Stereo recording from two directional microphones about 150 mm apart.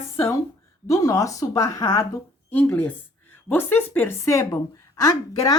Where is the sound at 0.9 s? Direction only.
20° left (ahead or behind).